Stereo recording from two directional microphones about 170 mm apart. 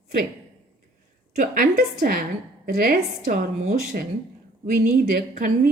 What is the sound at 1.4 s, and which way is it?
A woman's voice, 55° right (ahead or behind).